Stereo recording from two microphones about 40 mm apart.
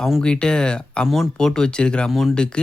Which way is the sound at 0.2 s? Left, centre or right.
Left.